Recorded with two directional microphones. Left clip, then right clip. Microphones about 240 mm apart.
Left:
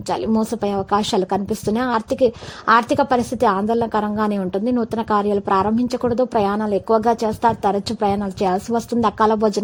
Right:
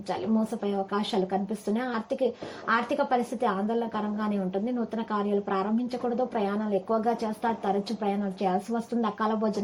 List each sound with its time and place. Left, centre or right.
0.1 s a woman's voice: left